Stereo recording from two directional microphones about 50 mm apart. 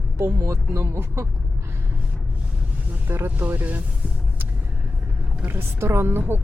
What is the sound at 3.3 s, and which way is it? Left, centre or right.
Speech, right.